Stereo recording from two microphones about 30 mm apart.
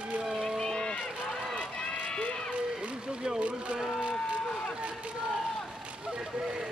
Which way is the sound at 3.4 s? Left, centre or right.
Right.